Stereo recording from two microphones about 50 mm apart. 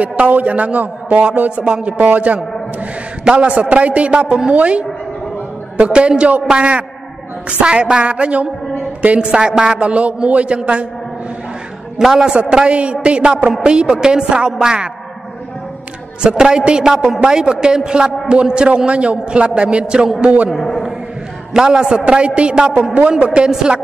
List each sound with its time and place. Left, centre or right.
0.0 s a man's voice: right
5.9 s a man's voice: centre
9.8 s a man's voice: right
12.0 s a man's voice: centre
12.6 s a man's voice: right
16.2 s a man's voice: centre
20.5 s a man's voice: centre
21.5 s a man's voice: centre